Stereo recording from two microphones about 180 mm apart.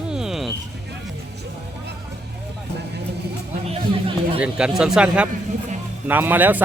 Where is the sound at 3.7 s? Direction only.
30° right (ahead or behind).